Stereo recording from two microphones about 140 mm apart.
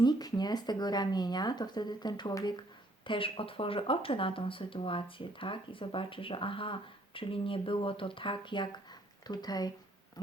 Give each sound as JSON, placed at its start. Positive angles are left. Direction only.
{"t": 0.0, "sound": "speech", "side_deg": 30}